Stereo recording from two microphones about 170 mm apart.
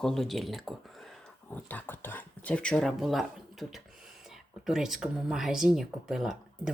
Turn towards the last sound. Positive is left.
turn(degrees=0)  # may be behind; listen again after turning